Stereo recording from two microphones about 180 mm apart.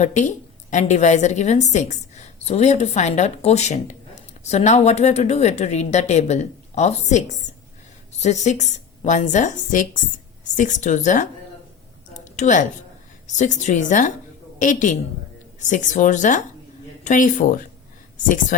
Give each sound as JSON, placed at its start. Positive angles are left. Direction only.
{"t": 0.0, "sound": "a woman's voice", "side_deg": 40}
{"t": 12.2, "sound": "a sound", "side_deg": 40}
{"t": 13.2, "sound": "a woman's voice", "side_deg": 40}